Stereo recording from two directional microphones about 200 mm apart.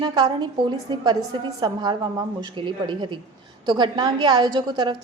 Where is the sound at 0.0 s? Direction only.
20° right (ahead or behind).